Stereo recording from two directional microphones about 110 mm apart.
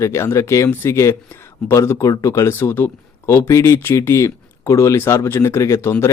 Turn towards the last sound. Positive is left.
turn(degrees=25)  # may be behind; listen again after turning